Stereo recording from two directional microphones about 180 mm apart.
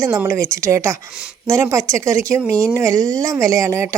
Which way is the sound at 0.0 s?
15° right (ahead or behind).